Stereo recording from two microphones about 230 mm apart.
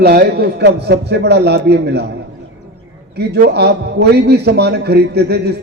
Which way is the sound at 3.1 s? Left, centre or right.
Right.